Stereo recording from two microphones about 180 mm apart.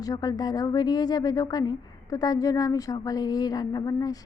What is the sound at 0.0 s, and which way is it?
Speech, 20° left (ahead or behind).